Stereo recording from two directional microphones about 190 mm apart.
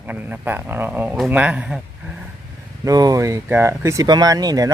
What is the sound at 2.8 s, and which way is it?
Speech, 20° right (ahead or behind).